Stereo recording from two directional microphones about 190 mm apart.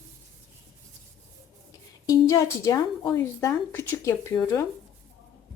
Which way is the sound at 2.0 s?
15° left (ahead or behind).